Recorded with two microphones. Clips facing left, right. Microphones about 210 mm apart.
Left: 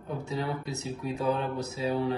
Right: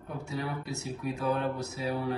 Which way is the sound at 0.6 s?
20° left (ahead or behind).